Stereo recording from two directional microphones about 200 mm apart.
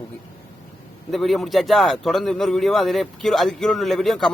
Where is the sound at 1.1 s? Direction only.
Centre (ahead or behind).